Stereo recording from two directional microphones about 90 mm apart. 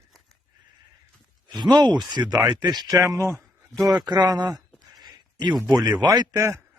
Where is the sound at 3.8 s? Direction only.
45° right (ahead or behind).